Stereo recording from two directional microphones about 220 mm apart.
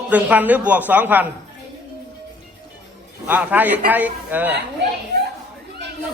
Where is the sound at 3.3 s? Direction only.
5° right (ahead or behind).